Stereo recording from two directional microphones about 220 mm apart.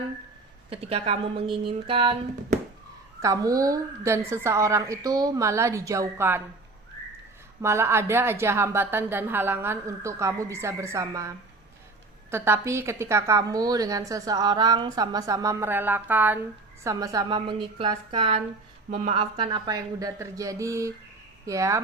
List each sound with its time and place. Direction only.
0.7 s a woman's voice: 25° right (ahead or behind); by 6.4 s 10° right (ahead or behind)
7.6 s a woman's voice: 10° right (ahead or behind)